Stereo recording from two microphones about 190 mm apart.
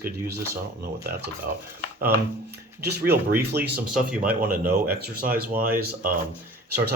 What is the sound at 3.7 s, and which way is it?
Speech, 5° right (ahead or behind).